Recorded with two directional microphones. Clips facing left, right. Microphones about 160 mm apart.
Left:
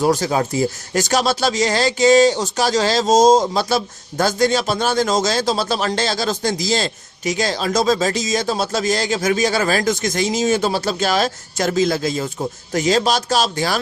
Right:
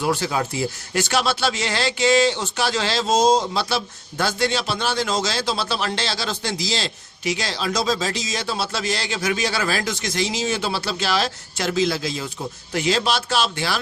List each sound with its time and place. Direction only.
0.0 s speech: 40° left (ahead or behind)